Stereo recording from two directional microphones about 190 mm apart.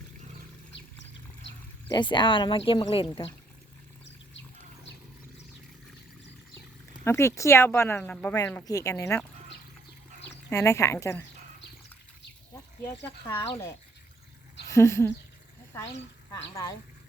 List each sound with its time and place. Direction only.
1.9 s speech: 25° left (ahead or behind)
7.0 s speech: 15° left (ahead or behind)
10.5 s speech: 15° left (ahead or behind)
13.0 s speech: 10° left (ahead or behind)